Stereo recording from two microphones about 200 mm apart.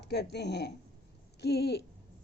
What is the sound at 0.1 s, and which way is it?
Speech, 55° left (ahead or behind).